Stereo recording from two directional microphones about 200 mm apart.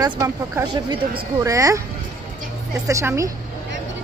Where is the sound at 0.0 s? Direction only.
20° right (ahead or behind).